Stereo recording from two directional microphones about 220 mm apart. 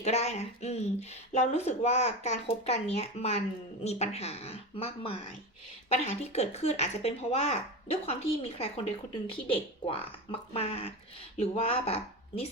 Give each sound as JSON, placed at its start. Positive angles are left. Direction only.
{"t": 0.0, "sound": "speech", "side_deg": 30}